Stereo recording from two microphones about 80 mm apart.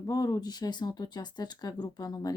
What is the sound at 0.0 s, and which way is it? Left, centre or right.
Speech, left.